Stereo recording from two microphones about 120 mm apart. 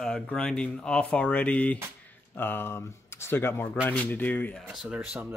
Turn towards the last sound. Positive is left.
turn(degrees=-10)  # may be behind; listen again after turning